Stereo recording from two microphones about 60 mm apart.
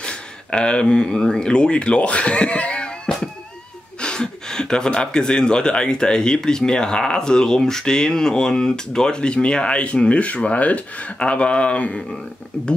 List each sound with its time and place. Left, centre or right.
0.0 s speech: centre